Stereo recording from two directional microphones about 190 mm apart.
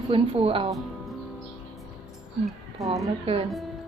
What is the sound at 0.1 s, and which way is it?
Speech, 30° right (ahead or behind).